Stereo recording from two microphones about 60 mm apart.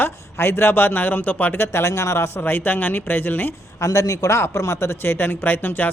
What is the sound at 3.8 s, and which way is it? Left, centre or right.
Speech, left.